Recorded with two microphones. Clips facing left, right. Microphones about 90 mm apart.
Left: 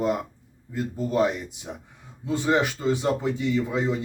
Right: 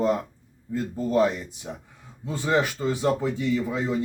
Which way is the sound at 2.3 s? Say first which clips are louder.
Left 1 dB; 20° left (ahead or behind).